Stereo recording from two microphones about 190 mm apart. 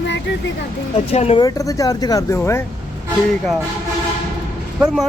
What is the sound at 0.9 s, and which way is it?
Speech, 35° left (ahead or behind).